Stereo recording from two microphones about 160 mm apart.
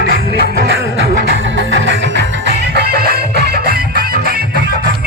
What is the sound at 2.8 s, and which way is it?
Music, 75° right (ahead or behind).